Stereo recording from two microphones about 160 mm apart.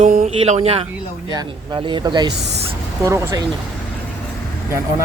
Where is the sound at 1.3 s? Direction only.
25° right (ahead or behind).